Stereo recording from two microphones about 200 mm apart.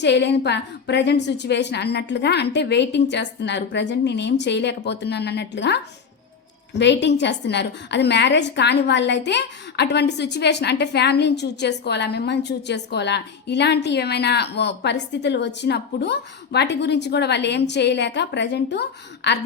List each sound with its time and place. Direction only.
0.0 s a woman's voice: 60° left (ahead or behind)